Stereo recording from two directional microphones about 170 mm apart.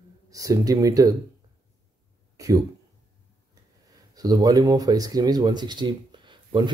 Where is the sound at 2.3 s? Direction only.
20° right (ahead or behind).